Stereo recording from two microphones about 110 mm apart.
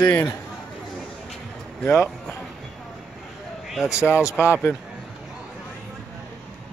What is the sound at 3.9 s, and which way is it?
Speech, 25° left (ahead or behind).